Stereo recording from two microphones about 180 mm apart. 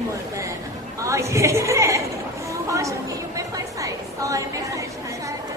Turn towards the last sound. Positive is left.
turn(degrees=-15)  # may be behind; listen again after turning